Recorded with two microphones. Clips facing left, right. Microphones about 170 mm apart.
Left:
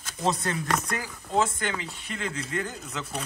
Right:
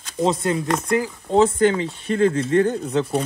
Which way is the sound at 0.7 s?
25° right (ahead or behind).